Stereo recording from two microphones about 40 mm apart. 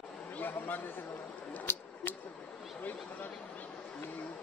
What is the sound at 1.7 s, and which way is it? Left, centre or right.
Speech, left.